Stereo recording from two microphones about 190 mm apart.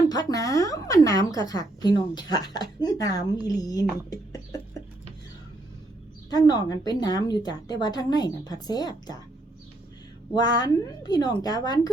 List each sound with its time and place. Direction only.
0.1 s a woman's voice: 20° left (ahead or behind)
6.3 s a woman's voice: 20° left (ahead or behind)
10.3 s a woman's voice: 20° left (ahead or behind)